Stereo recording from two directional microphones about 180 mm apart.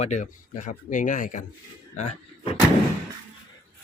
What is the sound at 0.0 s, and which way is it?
Speech, 40° left (ahead or behind).